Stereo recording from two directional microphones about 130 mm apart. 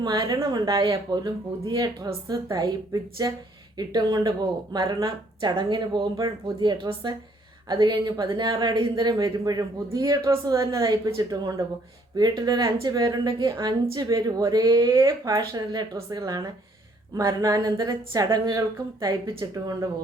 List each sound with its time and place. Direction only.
0.0 s a man's voice: 30° right (ahead or behind)